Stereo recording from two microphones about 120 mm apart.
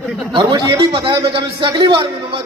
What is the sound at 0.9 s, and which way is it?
A man's voice, 45° right (ahead or behind).